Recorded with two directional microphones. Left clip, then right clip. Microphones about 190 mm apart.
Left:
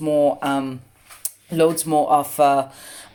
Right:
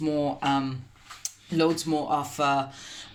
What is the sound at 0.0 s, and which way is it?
Speech, 25° left (ahead or behind).